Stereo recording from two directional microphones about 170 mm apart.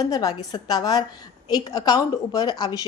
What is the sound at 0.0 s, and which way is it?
A woman's voice, 20° left (ahead or behind).